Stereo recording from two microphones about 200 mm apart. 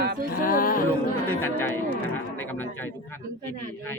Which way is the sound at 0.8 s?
10° left (ahead or behind).